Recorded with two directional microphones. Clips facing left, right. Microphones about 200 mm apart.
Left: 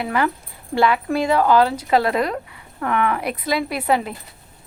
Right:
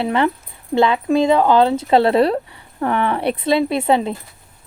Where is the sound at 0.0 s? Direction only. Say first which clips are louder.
Right 4 dB; 25° right (ahead or behind).